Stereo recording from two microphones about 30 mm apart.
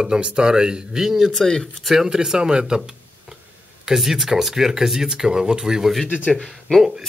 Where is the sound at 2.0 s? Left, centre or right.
Right.